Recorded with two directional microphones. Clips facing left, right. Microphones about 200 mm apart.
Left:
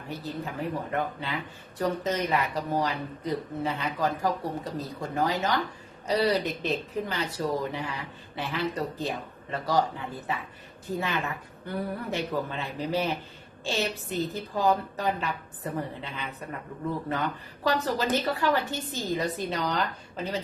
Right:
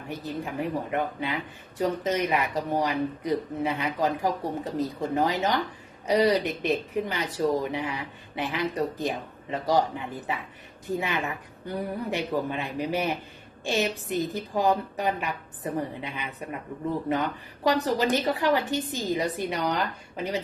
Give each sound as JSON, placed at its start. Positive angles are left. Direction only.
{"t": 0.1, "sound": "a woman's voice", "side_deg": -15}